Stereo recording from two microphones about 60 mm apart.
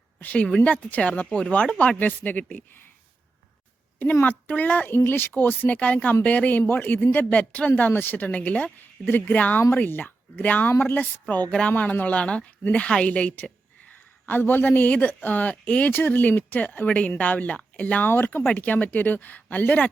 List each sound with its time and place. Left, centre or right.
0.2 s a woman's voice: left
4.0 s a woman's voice: left
7.8 s a woman's voice: left
11.0 s a woman's voice: left
15.9 s a woman's voice: left